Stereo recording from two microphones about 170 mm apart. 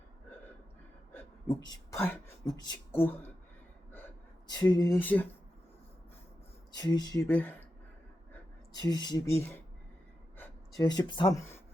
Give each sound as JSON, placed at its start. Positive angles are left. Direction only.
{"t": 1.5, "sound": "a sound", "side_deg": 25}
{"t": 4.4, "sound": "speech", "side_deg": 25}
{"t": 4.9, "sound": "speech", "side_deg": 10}
{"t": 6.7, "sound": "speech", "side_deg": 25}
{"t": 7.3, "sound": "speech", "side_deg": 10}
{"t": 8.8, "sound": "speech", "side_deg": 25}
{"t": 10.8, "sound": "speech", "side_deg": 25}
{"t": 11.3, "sound": "speech", "side_deg": 15}